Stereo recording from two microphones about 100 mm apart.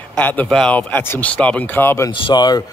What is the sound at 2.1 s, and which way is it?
Speech, 55° left (ahead or behind).